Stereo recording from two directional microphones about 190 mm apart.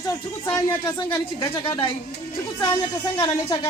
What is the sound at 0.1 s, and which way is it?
Speech, 20° left (ahead or behind).